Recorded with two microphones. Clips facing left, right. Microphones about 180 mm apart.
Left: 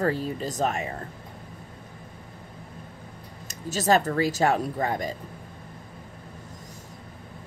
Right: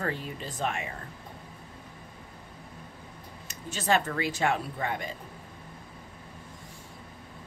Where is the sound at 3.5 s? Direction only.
40° left (ahead or behind).